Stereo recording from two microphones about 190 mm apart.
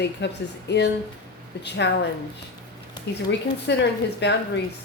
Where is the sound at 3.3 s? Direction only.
65° left (ahead or behind).